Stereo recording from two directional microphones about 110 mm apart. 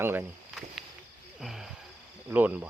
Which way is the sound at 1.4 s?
5° right (ahead or behind).